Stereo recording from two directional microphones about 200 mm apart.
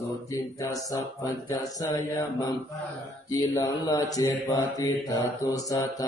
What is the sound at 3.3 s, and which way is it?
Mantra, 20° left (ahead or behind).